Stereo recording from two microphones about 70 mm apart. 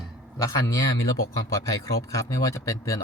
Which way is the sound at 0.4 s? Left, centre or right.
Left.